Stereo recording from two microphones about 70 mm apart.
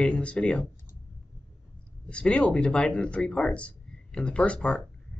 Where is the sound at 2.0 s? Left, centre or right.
Centre.